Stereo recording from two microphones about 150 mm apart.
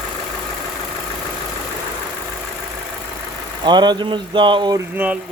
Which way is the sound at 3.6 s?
30° right (ahead or behind).